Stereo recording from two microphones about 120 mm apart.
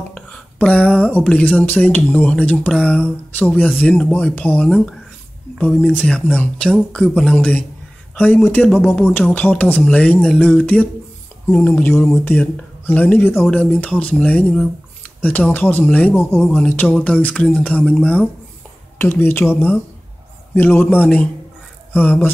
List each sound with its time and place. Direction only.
0.1 s speech: 10° left (ahead or behind)